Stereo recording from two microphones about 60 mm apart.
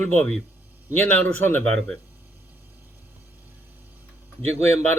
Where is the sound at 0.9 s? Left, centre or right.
Left.